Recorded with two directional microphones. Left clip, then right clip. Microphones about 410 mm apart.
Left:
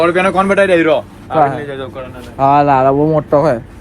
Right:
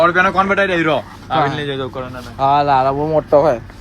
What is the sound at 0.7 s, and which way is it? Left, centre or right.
Speech, centre.